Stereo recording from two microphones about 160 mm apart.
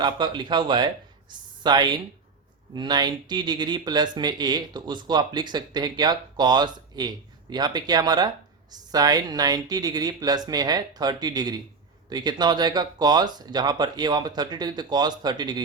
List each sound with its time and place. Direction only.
0.0 s speech: 30° right (ahead or behind)